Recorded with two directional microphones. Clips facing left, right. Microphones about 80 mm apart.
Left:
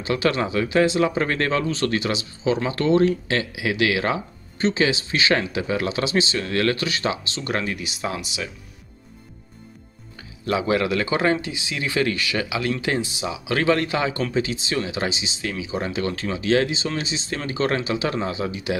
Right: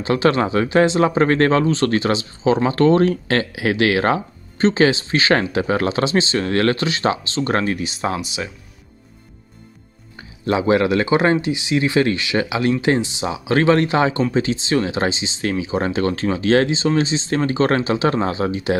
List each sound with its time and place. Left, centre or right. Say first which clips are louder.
0.0 s speech: right 5 dB; right
10.1 s speech: right 4 dB; right